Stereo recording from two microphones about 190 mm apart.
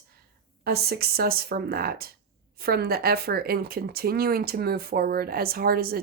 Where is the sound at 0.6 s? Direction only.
55° right (ahead or behind).